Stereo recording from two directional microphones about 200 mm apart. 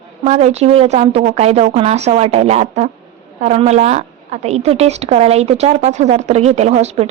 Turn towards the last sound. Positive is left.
turn(degrees=-30)  # may be behind; listen again after turning